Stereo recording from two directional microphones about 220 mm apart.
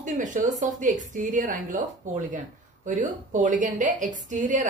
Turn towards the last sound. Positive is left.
turn(degrees=-35)  # may be behind; listen again after turning